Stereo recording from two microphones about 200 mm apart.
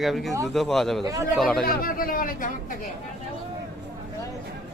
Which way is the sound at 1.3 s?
5° left (ahead or behind).